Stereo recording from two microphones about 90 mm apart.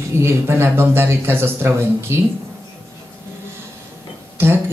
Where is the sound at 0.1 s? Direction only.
30° right (ahead or behind).